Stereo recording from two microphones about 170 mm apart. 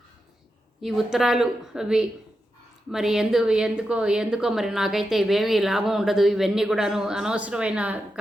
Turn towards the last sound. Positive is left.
turn(degrees=-5)  # may be behind; listen again after turning